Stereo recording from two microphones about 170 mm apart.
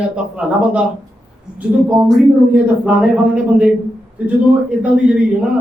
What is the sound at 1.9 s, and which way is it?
A man's voice, 10° right (ahead or behind).